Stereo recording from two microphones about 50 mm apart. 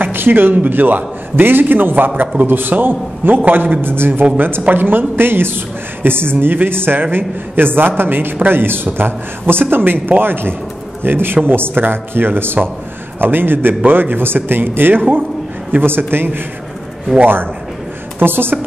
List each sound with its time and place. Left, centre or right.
0.0 s a man's voice: right